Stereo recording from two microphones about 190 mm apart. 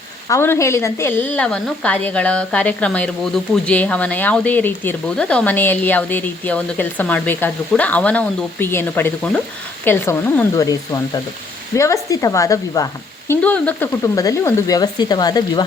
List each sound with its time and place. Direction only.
0.3 s speech: 15° left (ahead or behind)